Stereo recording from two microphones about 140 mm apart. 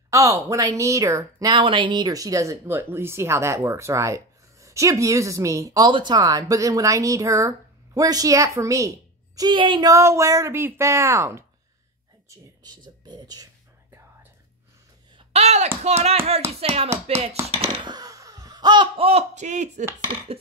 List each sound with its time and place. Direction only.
0.1 s a woman's voice: 20° right (ahead or behind)
5.9 s a woman's voice: 35° right (ahead or behind)
13.0 s whispering: 30° right (ahead or behind)
15.1 s a sound: 50° right (ahead or behind)
15.8 s speech: 50° right (ahead or behind)
17.9 s laughter: 25° right (ahead or behind); by 19.7 s 55° right (ahead or behind)
20.0 s speech: 45° right (ahead or behind)